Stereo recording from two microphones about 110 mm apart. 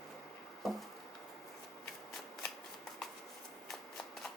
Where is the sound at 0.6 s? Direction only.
Centre (ahead or behind).